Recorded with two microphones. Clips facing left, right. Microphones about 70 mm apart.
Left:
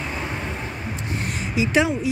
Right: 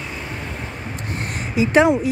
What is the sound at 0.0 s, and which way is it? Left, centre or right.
Vehicle, centre.